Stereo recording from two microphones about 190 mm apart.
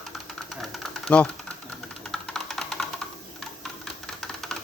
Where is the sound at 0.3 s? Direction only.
Centre (ahead or behind).